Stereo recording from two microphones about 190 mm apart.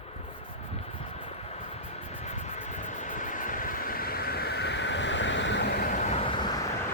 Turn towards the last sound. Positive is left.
turn(degrees=20)  # may be behind; listen again after turning